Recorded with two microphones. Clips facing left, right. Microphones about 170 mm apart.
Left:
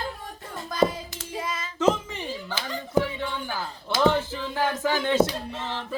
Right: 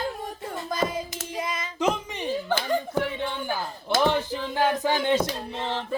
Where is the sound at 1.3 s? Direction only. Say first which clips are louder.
Even; 20° right (ahead or behind).